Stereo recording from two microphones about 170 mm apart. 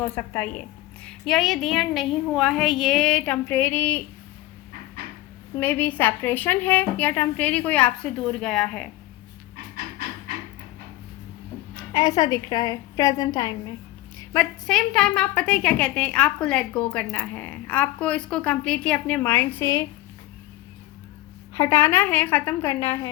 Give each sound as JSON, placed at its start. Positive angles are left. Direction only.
{"t": 0.0, "sound": "a woman's voice", "side_deg": 15}
{"t": 1.0, "sound": "a woman's voice", "side_deg": 0}
{"t": 5.5, "sound": "a woman's voice", "side_deg": 10}
{"t": 11.9, "sound": "a woman's voice", "side_deg": 20}
{"t": 14.3, "sound": "a woman's voice", "side_deg": 5}
{"t": 21.5, "sound": "a woman's voice", "side_deg": 15}